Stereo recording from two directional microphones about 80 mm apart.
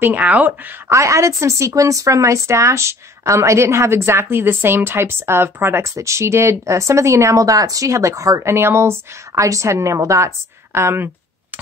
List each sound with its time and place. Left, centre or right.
0.0 s speech: centre
0.8 s speech: right